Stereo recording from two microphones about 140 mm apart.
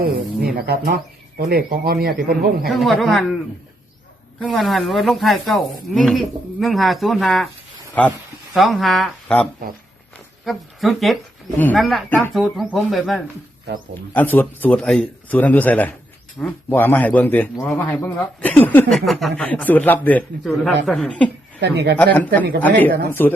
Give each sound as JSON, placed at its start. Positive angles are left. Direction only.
{"t": 0.0, "sound": "speech", "side_deg": -90}
{"t": 2.6, "sound": "a man's voice", "side_deg": 0}
{"t": 10.4, "sound": "speech", "side_deg": 0}
{"t": 11.5, "sound": "a man's voice", "side_deg": 10}
{"t": 11.8, "sound": "speech", "side_deg": 0}
{"t": 14.1, "sound": "a man's voice", "side_deg": 10}
{"t": 18.9, "sound": "a man's voice", "side_deg": 0}